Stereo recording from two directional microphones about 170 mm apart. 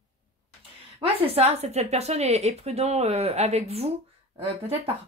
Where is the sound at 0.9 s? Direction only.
35° right (ahead or behind).